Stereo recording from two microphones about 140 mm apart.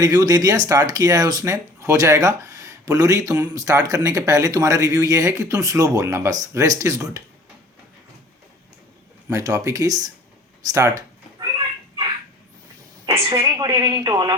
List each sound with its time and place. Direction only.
0.0 s speech: 25° right (ahead or behind)
9.3 s speech: 20° right (ahead or behind)
10.7 s cat: 20° right (ahead or behind)
13.3 s speech: 25° right (ahead or behind)